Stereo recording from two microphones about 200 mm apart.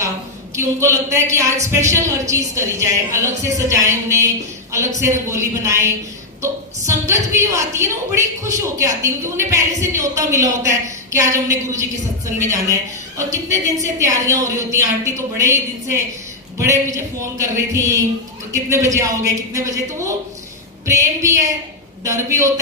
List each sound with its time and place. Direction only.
0.5 s a woman's voice: 15° right (ahead or behind)
1.5 s a woman's voice: 35° right (ahead or behind)
1.8 s a woman's voice: 15° right (ahead or behind)
11.7 s a woman's voice: 15° right (ahead or behind)